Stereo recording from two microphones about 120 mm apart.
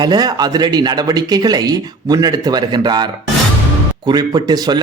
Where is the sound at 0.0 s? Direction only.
35° right (ahead or behind).